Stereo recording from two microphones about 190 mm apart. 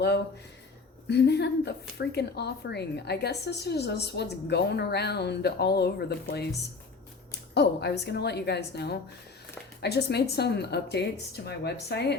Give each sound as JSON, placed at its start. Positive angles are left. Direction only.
{"t": 1.0, "sound": "a woman's voice", "side_deg": 60}